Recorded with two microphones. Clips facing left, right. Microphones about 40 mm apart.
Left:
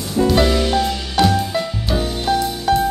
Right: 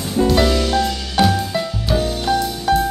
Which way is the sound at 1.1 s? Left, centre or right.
Centre.